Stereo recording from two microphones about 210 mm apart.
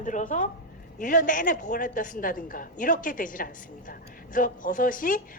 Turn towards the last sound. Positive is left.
turn(degrees=40)  # may be behind; listen again after turning